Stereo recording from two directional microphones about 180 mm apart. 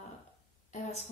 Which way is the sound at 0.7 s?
35° left (ahead or behind).